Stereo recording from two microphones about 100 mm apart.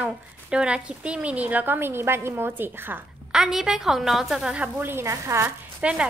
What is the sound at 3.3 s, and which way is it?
A woman's voice, 5° right (ahead or behind).